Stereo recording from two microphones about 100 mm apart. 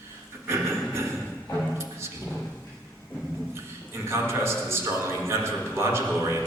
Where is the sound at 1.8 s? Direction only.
25° right (ahead or behind).